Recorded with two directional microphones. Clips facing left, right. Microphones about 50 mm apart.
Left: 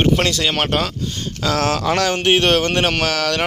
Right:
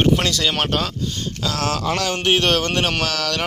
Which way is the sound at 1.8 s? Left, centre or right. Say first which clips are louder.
Left 4 dB; left.